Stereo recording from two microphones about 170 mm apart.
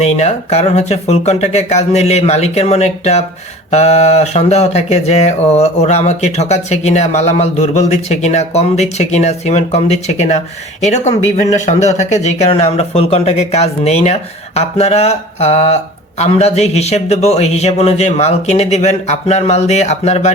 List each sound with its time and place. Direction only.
0.0 s speech: 40° left (ahead or behind)